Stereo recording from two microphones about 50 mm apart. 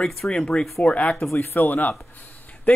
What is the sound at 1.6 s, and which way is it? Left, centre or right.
Speech, left.